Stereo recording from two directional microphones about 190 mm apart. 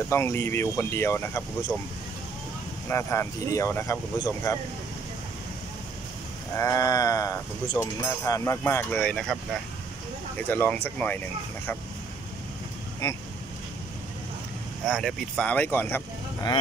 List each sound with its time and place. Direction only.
0.1 s speech: 15° left (ahead or behind)
2.9 s speech: 15° left (ahead or behind)
6.5 s speech: 15° left (ahead or behind)
14.9 s speech: centre (ahead or behind)